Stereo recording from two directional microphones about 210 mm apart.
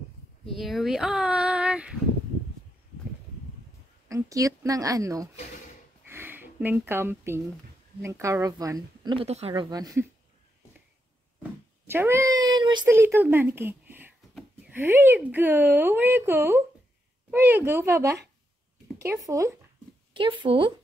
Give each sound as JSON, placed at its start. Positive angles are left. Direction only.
{"t": 0.5, "sound": "a sound", "side_deg": 0}
{"t": 4.1, "sound": "a woman's voice", "side_deg": -15}
{"t": 6.0, "sound": "sniff", "side_deg": -10}
{"t": 8.0, "sound": "speech", "side_deg": -15}
{"t": 11.9, "sound": "a child's voice", "side_deg": -10}